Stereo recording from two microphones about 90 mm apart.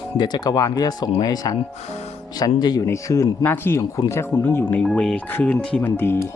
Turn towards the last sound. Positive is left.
turn(degrees=25)  # may be behind; listen again after turning